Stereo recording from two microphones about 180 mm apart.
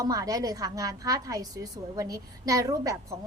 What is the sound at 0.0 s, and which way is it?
A woman's voice, 20° right (ahead or behind).